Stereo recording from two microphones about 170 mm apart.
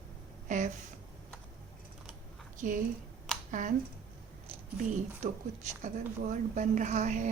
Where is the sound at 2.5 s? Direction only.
50° right (ahead or behind).